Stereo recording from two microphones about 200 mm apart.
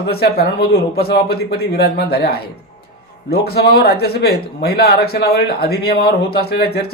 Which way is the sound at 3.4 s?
50° left (ahead or behind).